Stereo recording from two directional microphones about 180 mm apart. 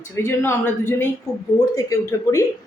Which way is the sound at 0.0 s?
15° left (ahead or behind).